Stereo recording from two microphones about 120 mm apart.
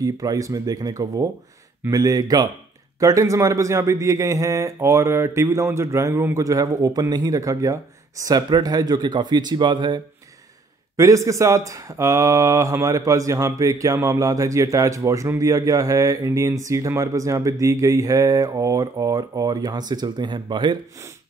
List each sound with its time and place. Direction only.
0.0 s speech: 30° right (ahead or behind)
11.0 s speech: 25° right (ahead or behind)